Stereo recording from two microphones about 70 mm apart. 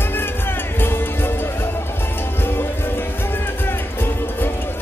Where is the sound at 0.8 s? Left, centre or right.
Left.